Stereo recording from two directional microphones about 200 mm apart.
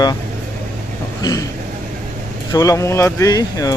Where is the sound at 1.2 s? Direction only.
20° left (ahead or behind).